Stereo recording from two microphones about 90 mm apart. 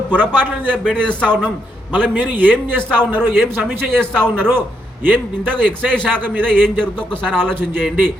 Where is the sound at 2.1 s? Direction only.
20° right (ahead or behind).